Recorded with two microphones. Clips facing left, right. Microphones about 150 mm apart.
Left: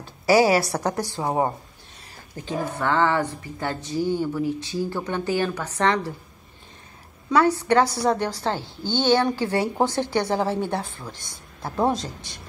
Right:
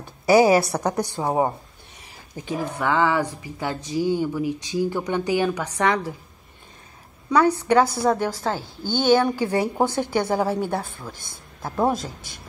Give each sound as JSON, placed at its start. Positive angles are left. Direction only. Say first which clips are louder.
{"t": 0.3, "sound": "a woman's voice", "louder": "right 2 dB", "side_deg": -20}
{"t": 7.2, "sound": "a woman's voice", "louder": "right 1 dB", "side_deg": -15}